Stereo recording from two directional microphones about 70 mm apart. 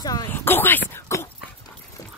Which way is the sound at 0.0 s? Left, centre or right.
Left.